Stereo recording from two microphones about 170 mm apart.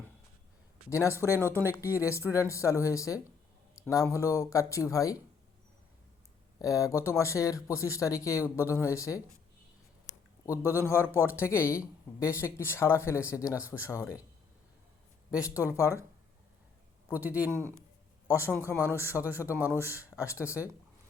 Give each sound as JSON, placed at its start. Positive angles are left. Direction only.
{"t": 0.9, "sound": "speech", "side_deg": 15}
{"t": 1.4, "sound": "a man's voice", "side_deg": -15}
{"t": 2.0, "sound": "speech", "side_deg": 15}
{"t": 3.8, "sound": "a sound", "side_deg": 20}
{"t": 4.1, "sound": "speech", "side_deg": 15}
{"t": 6.6, "sound": "speech", "side_deg": 20}
{"t": 10.8, "sound": "speech", "side_deg": 15}
{"t": 15.3, "sound": "a man's voice", "side_deg": -5}
{"t": 15.6, "sound": "speech", "side_deg": 15}
{"t": 17.1, "sound": "a man's voice", "side_deg": -10}
{"t": 18.3, "sound": "speech", "side_deg": 15}
{"t": 18.8, "sound": "a man's voice", "side_deg": -15}
{"t": 19.8, "sound": "speech", "side_deg": 15}